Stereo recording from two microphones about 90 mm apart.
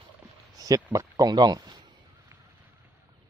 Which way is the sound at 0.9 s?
45° right (ahead or behind).